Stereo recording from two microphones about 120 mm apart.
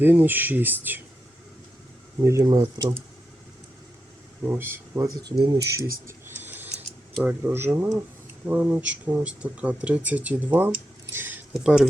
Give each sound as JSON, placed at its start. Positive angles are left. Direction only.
{"t": 0.0, "sound": "speech", "side_deg": -15}
{"t": 2.2, "sound": "speech", "side_deg": -30}
{"t": 4.4, "sound": "speech", "side_deg": -20}
{"t": 5.0, "sound": "speech", "side_deg": -35}
{"t": 5.7, "sound": "mechanisms", "side_deg": -25}
{"t": 8.4, "sound": "speech", "side_deg": -15}
{"t": 11.1, "sound": "a sound", "side_deg": -15}
{"t": 11.5, "sound": "speech", "side_deg": -5}